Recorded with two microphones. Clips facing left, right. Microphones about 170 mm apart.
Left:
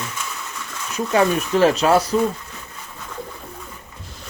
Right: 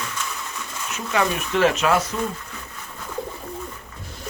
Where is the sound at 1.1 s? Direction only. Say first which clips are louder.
Left 5 dB; 35° left (ahead or behind).